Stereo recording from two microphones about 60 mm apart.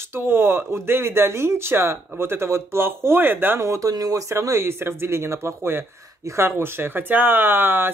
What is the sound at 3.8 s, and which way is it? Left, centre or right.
Speech, right.